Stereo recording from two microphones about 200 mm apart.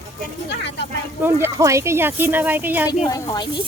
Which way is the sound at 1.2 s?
15° right (ahead or behind).